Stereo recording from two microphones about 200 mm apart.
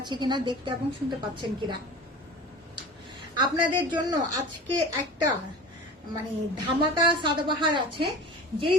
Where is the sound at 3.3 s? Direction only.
20° right (ahead or behind).